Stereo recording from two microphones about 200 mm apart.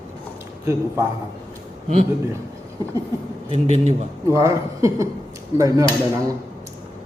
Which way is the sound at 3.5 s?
35° right (ahead or behind).